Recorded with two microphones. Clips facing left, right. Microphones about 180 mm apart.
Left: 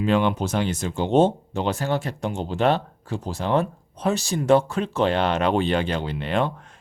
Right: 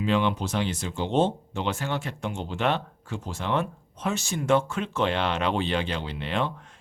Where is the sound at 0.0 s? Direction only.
45° left (ahead or behind).